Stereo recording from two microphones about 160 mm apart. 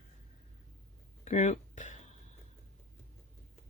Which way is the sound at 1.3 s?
45° left (ahead or behind).